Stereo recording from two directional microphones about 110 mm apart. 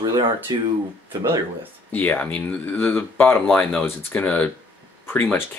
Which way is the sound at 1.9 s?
15° left (ahead or behind).